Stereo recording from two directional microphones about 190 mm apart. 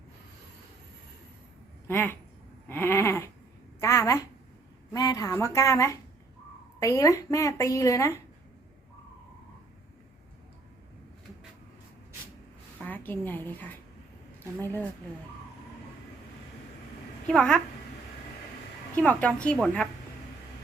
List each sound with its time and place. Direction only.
1.9 s a woman's voice: 10° left (ahead or behind)
12.8 s a woman's voice: 10° left (ahead or behind)
17.2 s a woman's voice: 5° left (ahead or behind)
19.0 s a woman's voice: 5° left (ahead or behind)